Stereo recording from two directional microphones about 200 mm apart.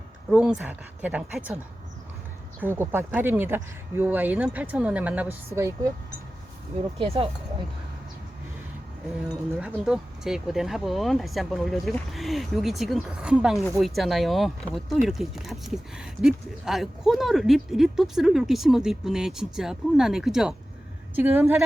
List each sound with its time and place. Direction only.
0.3 s speech: 5° right (ahead or behind)
2.6 s speech: 10° right (ahead or behind)
7.0 s speech: 25° right (ahead or behind)
9.6 s speech: 5° right (ahead or behind)